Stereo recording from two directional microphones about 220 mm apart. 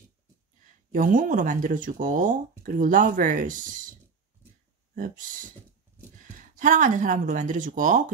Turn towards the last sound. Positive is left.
turn(degrees=-35)  # may be behind; listen again after turning